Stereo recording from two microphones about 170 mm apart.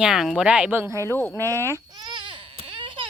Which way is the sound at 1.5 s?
15° right (ahead or behind).